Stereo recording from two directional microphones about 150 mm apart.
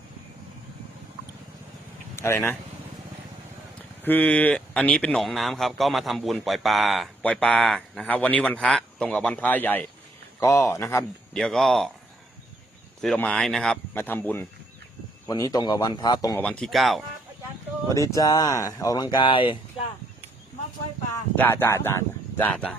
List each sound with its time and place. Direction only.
2.1 s speech: 15° left (ahead or behind)
4.0 s speech: 10° left (ahead or behind)
11.3 s speech: 5° left (ahead or behind)
13.1 s speech: 5° left (ahead or behind)
15.3 s speech: 25° left (ahead or behind)
16.4 s speech: 5° left (ahead or behind)
17.9 s speech: 20° left (ahead or behind)
21.3 s speech: 15° left (ahead or behind)